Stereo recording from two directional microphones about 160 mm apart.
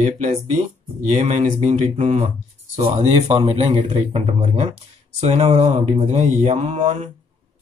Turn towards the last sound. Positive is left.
turn(degrees=-45)  # may be behind; listen again after turning